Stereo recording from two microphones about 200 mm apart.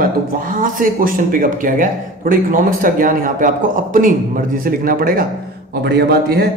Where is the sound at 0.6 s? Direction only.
45° right (ahead or behind).